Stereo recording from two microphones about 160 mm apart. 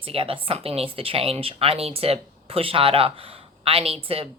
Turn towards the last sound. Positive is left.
turn(degrees=-35)  # may be behind; listen again after turning